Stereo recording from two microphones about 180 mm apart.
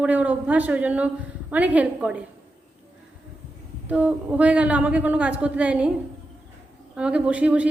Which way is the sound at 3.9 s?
10° right (ahead or behind).